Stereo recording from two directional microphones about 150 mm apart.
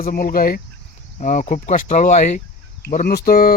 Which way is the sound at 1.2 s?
55° left (ahead or behind).